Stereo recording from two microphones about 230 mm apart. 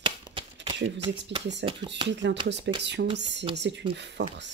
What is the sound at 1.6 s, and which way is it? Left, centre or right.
Speech, right.